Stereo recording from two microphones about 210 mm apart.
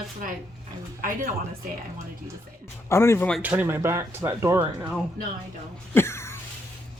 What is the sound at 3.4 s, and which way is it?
Speech, 10° right (ahead or behind).